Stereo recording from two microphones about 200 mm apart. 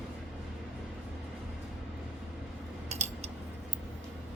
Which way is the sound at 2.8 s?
30° right (ahead or behind).